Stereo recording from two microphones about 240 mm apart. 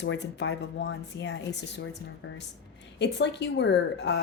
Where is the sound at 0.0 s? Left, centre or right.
Left.